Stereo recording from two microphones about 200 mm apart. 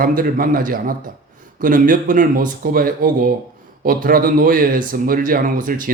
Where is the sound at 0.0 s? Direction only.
45° right (ahead or behind).